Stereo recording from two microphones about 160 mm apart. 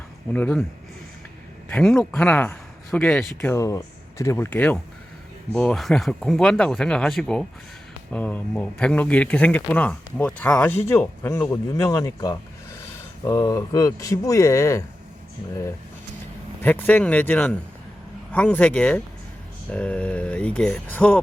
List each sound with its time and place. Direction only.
0.3 s speech: 10° left (ahead or behind)
1.7 s speech: 5° left (ahead or behind)
3.5 s speech: 20° left (ahead or behind)
16.6 s speech: 10° left (ahead or behind)